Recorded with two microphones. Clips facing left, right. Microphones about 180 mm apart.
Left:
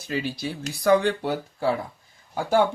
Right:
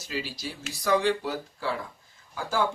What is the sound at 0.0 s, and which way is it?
Speech, 60° left (ahead or behind).